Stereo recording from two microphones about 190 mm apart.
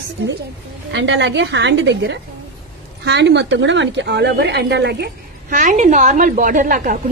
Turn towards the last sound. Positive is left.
turn(degrees=-45)  # may be behind; listen again after turning